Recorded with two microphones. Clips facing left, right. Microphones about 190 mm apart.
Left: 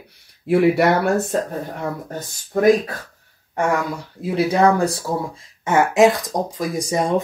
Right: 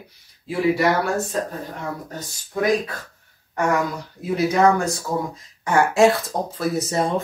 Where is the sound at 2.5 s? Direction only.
50° left (ahead or behind).